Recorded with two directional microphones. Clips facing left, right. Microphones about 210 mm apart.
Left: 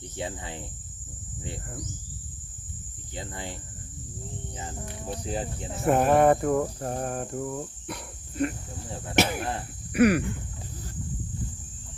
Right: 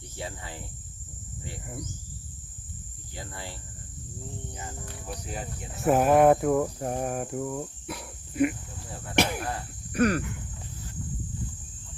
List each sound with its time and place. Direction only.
0.2 s speech: 20° left (ahead or behind)
3.2 s speech: 20° left (ahead or behind)
4.5 s speech: 25° left (ahead or behind)
5.8 s cricket: centre (ahead or behind)
9.1 s cricket: centre (ahead or behind)
9.9 s a sound: 10° left (ahead or behind)